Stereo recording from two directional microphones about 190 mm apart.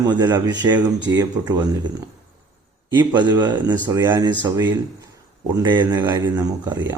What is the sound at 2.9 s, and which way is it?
Speech, 25° right (ahead or behind).